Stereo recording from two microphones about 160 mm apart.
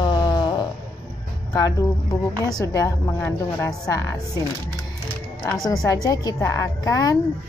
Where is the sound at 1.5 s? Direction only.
20° left (ahead or behind).